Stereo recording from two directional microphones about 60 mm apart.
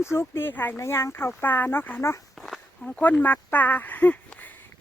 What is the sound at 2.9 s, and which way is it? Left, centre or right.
Speech, left.